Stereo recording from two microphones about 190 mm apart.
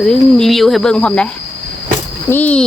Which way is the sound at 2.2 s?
10° left (ahead or behind).